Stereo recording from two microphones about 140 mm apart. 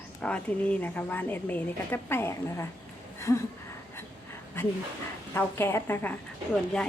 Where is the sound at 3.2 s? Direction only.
20° left (ahead or behind).